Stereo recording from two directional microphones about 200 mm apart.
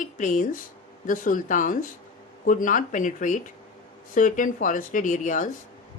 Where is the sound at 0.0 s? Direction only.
40° left (ahead or behind).